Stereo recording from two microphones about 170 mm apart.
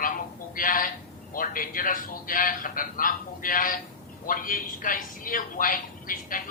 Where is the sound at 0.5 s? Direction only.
55° left (ahead or behind).